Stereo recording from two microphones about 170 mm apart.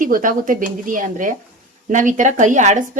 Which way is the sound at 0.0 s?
50° right (ahead or behind).